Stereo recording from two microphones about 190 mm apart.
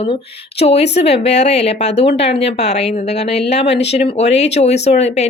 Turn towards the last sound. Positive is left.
turn(degrees=35)  # may be behind; listen again after turning